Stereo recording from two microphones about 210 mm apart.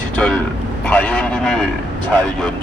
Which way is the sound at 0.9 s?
5° left (ahead or behind).